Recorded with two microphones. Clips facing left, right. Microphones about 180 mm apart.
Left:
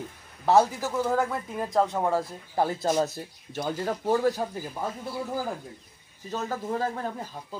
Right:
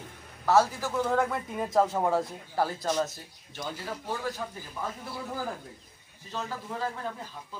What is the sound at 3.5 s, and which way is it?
Speech, 45° left (ahead or behind).